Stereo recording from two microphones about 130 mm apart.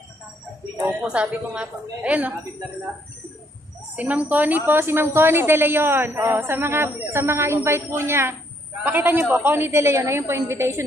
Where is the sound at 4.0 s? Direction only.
10° right (ahead or behind).